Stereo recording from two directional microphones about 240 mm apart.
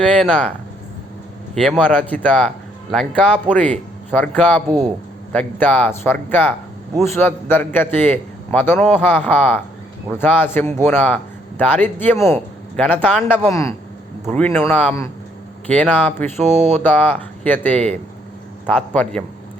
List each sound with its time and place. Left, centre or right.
0.0 s speech: centre
1.8 s a man's voice: centre
16.6 s a sound: right
16.8 s a man's voice: centre